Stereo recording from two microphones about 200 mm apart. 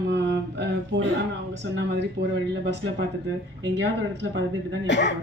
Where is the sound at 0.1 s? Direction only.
60° right (ahead or behind).